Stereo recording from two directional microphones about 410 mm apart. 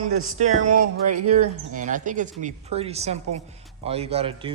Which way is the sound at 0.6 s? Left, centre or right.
Right.